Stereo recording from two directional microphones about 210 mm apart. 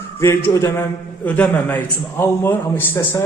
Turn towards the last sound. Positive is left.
turn(degrees=10)  # may be behind; listen again after turning